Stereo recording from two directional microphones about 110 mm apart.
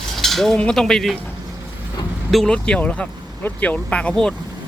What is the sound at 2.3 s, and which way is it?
Speech, 5° left (ahead or behind).